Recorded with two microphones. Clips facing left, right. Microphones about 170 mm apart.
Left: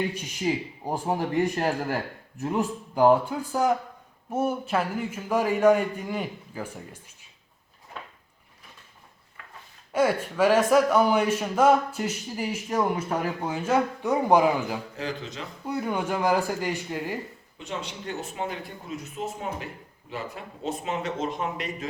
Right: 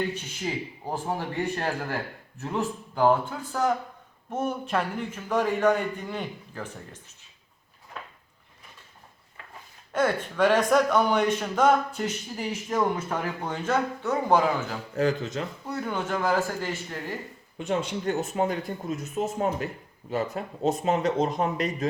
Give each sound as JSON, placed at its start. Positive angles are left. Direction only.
{"t": 0.1, "sound": "speech", "side_deg": 10}
{"t": 7.9, "sound": "drawer open or close", "side_deg": 0}
{"t": 9.9, "sound": "speech", "side_deg": 10}
{"t": 15.0, "sound": "speech", "side_deg": -45}
{"t": 15.6, "sound": "speech", "side_deg": 10}
{"t": 17.6, "sound": "speech", "side_deg": -50}